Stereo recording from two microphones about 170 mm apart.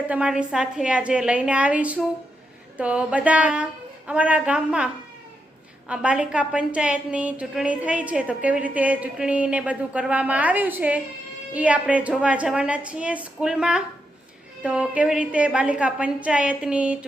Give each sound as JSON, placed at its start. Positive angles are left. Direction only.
{"t": 0.1, "sound": "a woman's voice", "side_deg": -5}
{"t": 5.9, "sound": "a woman's voice", "side_deg": -5}